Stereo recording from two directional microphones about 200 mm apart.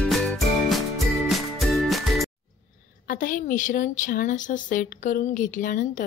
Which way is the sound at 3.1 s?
45° left (ahead or behind).